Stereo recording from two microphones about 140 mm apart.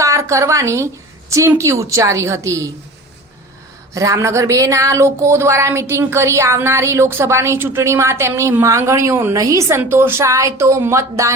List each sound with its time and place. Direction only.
0.0 s a woman's voice: 20° right (ahead or behind)
3.9 s speech: 20° right (ahead or behind)